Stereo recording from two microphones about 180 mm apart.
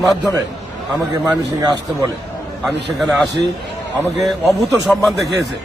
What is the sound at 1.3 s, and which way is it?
Speech, 20° right (ahead or behind).